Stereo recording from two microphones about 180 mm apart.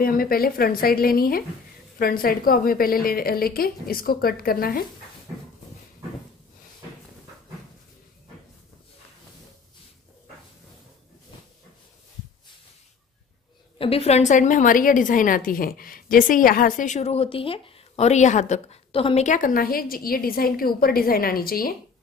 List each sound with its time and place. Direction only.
0.0 s a woman's voice: 55° left (ahead or behind)
13.7 s a woman's voice: 30° left (ahead or behind); by 21.7 s 55° left (ahead or behind)